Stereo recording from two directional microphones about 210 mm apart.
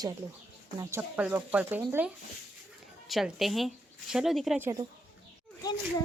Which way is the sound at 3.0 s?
Centre (ahead or behind).